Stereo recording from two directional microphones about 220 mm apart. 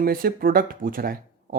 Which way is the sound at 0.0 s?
40° right (ahead or behind).